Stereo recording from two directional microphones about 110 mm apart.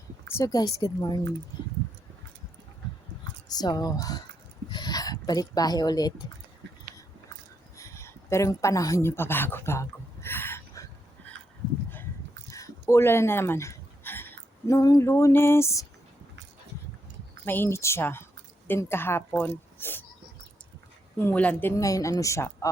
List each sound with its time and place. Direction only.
0.3 s speech: 25° left (ahead or behind)
0.5 s speech: 35° left (ahead or behind)
3.5 s speech: 35° left (ahead or behind)
7.8 s a sound: 25° left (ahead or behind)
12.5 s a sound: 30° left (ahead or behind)
14.8 s a woman's voice: 30° left (ahead or behind)
17.4 s a woman's voice: 20° left (ahead or behind)
21.2 s speech: 15° left (ahead or behind)
21.8 s a woman's voice: 30° left (ahead or behind)